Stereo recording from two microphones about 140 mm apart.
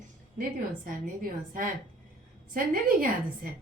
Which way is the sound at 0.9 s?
80° right.